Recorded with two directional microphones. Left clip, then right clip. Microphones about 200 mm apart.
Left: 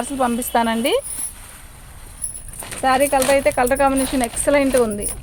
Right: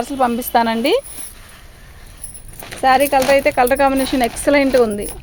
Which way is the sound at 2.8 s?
50° right (ahead or behind).